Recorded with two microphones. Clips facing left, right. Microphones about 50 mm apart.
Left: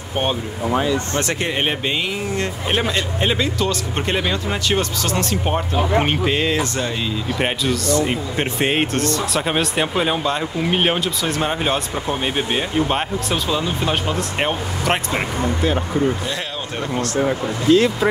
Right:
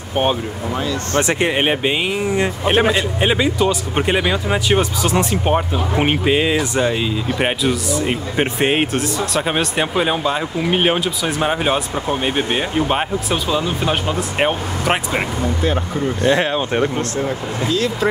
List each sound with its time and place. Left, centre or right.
0.1 s speech: centre
0.7 s speech: left
1.2 s speech: centre
16.3 s speech: right
17.7 s speech: left